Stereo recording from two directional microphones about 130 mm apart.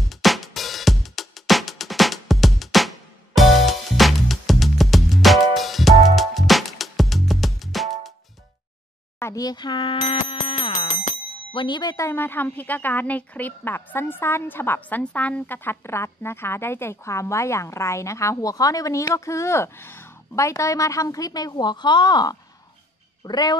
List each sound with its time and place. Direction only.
0.1 s music: centre (ahead or behind)
9.2 s speech: 25° left (ahead or behind)
10.0 s music: 50° left (ahead or behind)
11.5 s speech: 35° left (ahead or behind)